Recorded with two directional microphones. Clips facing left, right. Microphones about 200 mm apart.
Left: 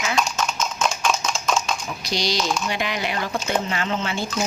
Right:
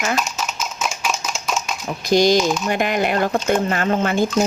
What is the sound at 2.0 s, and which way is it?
Speech, 50° right (ahead or behind).